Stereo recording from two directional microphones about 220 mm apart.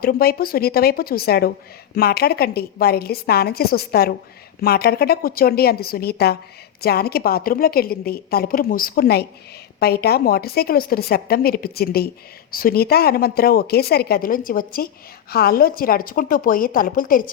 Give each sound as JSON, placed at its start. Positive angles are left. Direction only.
{"t": 0.0, "sound": "a woman's voice", "side_deg": 45}